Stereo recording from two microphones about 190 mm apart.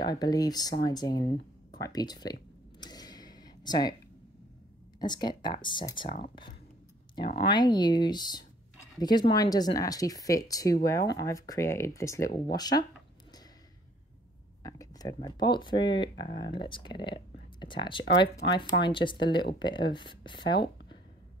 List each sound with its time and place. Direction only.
0.0 s speech: 20° left (ahead or behind)
2.8 s a sound: 20° left (ahead or behind)
5.0 s speech: 20° left (ahead or behind)
7.3 s speech: 25° left (ahead or behind)
14.6 s a sound: 20° left (ahead or behind)
15.2 s speech: 20° left (ahead or behind)